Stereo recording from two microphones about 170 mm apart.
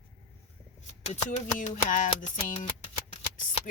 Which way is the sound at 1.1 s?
45° left (ahead or behind).